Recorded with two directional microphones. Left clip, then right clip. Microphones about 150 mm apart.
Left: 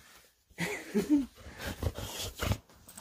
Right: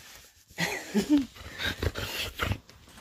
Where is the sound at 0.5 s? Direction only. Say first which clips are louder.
Right 4 dB; 55° right (ahead or behind).